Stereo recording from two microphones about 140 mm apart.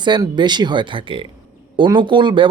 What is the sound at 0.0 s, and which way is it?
Speech, 30° right (ahead or behind).